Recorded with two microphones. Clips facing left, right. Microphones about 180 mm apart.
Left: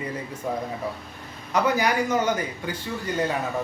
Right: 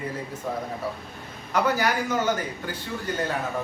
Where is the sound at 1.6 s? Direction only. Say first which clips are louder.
Left 2 dB; 10° left (ahead or behind).